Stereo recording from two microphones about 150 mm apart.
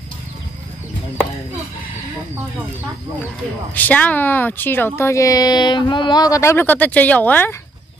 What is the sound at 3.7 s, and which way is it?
Speech, 10° left (ahead or behind).